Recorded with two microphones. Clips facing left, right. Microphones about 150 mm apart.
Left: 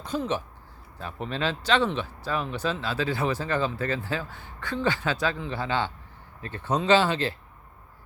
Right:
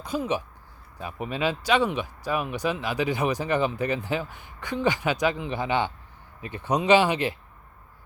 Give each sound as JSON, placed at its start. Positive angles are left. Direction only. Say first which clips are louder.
{"t": 0.0, "sound": "speech", "louder": "right 1 dB", "side_deg": -10}